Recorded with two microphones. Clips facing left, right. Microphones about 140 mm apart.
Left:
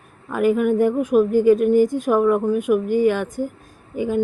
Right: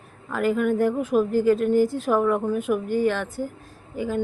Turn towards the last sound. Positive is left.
turn(degrees=15)  # may be behind; listen again after turning